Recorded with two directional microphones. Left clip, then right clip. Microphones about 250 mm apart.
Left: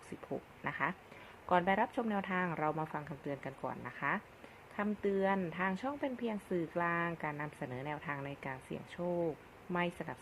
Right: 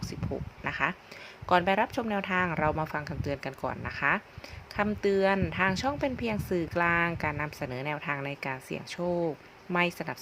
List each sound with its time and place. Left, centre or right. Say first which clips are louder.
0.6 s speech: right 7 dB; centre